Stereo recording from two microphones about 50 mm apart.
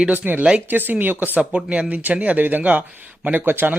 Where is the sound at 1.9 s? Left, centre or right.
Right.